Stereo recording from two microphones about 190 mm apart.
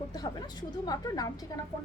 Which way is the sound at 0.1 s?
20° left (ahead or behind).